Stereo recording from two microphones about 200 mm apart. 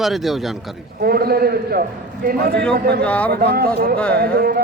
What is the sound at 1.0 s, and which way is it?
Speech, 50° right (ahead or behind).